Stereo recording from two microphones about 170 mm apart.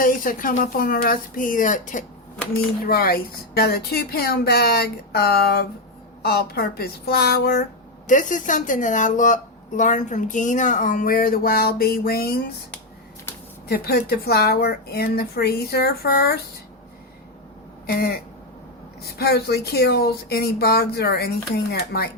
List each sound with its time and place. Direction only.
0.0 s speech: 55° left (ahead or behind)
2.8 s speech: 65° left (ahead or behind)
8.0 s a woman's voice: 50° left (ahead or behind); by 12.4 s 65° left (ahead or behind)
13.7 s speech: 65° left (ahead or behind)
17.8 s speech: 65° left (ahead or behind)
19.2 s speech: 70° left (ahead or behind)